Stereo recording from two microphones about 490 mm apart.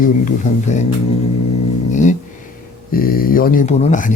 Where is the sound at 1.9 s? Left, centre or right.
Centre.